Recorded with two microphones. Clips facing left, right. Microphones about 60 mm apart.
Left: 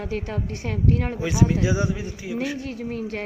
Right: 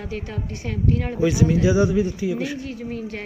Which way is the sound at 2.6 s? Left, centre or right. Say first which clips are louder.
Even; left.